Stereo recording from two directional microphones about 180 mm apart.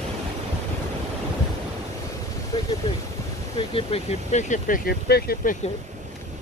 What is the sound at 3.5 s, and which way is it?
Speech, 30° left (ahead or behind).